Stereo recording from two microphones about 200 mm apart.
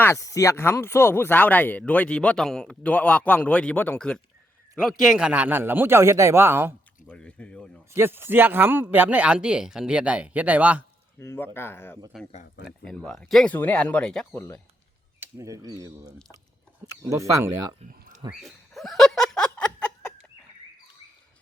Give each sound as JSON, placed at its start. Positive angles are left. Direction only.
{"t": 0.0, "sound": "speech", "side_deg": 15}
{"t": 7.1, "sound": "speech", "side_deg": 5}
{"t": 7.9, "sound": "speech", "side_deg": -10}
{"t": 11.2, "sound": "speech", "side_deg": 10}
{"t": 12.6, "sound": "speech", "side_deg": 0}
{"t": 15.2, "sound": "speech", "side_deg": -15}
{"t": 18.3, "sound": "a sound", "side_deg": 0}